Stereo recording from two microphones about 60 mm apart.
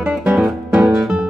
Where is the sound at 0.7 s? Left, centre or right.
Centre.